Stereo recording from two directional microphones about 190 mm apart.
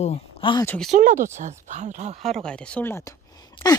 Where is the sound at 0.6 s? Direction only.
5° left (ahead or behind).